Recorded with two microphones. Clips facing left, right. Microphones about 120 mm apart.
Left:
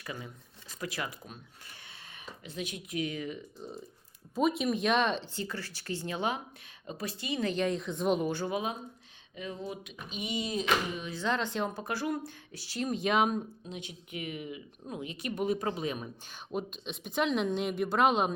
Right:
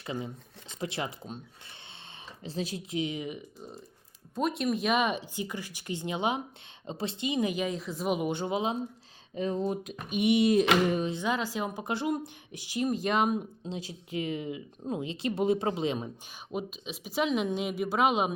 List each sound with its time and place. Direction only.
0.0 s speech: 25° right (ahead or behind)
2.4 s speech: 30° right (ahead or behind)
4.4 s speech: centre (ahead or behind)
8.3 s speech: 20° right (ahead or behind)
9.3 s speech: 35° right (ahead or behind)
10.2 s a sound: 65° right (ahead or behind)
11.1 s speech: 10° right (ahead or behind)
11.8 s speech: 20° right (ahead or behind)
12.9 s speech: centre (ahead or behind)
13.7 s speech: 35° right (ahead or behind)
16.5 s speech: 5° right (ahead or behind)